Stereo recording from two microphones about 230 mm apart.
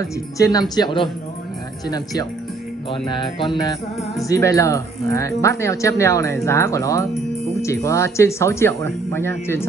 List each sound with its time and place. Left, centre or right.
0.4 s speech: centre
3.1 s music: left
4.3 s speech: centre